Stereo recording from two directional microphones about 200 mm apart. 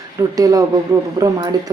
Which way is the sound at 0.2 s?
15° right (ahead or behind).